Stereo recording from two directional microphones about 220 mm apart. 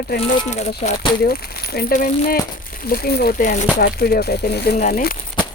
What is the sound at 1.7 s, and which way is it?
Speech, 40° left (ahead or behind).